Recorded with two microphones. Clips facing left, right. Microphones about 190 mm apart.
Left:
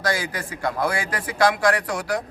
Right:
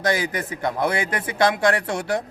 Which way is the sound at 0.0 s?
20° right (ahead or behind).